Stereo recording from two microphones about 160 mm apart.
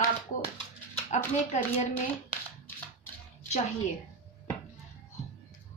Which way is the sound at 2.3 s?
15° left (ahead or behind).